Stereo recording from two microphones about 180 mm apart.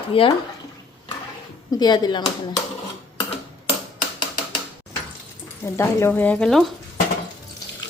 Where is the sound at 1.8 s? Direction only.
20° left (ahead or behind).